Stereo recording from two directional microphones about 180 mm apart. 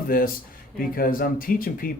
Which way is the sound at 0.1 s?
55° left (ahead or behind).